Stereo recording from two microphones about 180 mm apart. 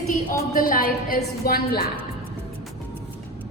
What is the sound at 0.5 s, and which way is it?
A woman's voice, 50° left (ahead or behind).